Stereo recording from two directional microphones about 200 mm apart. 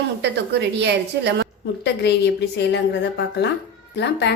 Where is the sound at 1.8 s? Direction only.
60° left (ahead or behind).